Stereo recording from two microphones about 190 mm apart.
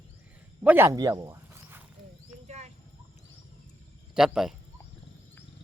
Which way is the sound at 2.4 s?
35° right (ahead or behind).